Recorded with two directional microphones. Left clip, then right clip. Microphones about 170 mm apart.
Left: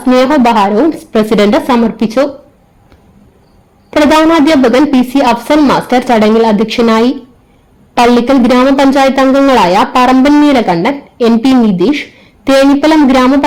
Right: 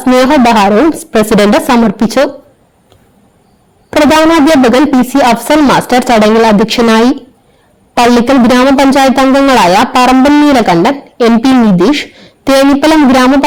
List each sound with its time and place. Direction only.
0.1 s speech: 40° right (ahead or behind)
3.8 s speech: 40° right (ahead or behind)